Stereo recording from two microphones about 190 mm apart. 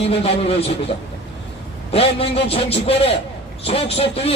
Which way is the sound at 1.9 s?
30° left (ahead or behind).